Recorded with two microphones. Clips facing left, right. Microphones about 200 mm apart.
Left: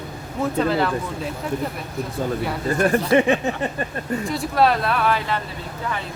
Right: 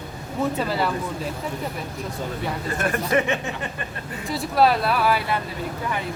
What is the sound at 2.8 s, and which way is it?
Speech, 35° left (ahead or behind).